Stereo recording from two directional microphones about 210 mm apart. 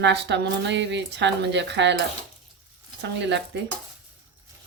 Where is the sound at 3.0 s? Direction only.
55° right (ahead or behind).